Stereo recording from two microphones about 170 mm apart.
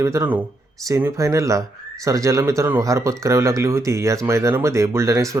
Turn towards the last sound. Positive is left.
turn(degrees=-20)  # may be behind; listen again after turning